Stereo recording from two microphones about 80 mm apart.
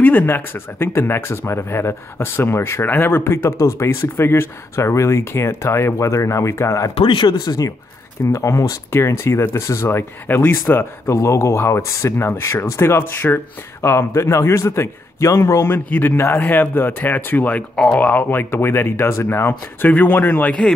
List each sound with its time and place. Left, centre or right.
0.0 s speech: left
7.1 s speech: left
8.3 s speech: left